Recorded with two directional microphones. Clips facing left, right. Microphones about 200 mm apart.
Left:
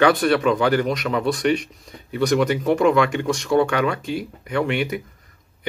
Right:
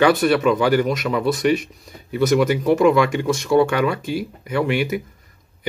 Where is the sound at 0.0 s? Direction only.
5° right (ahead or behind).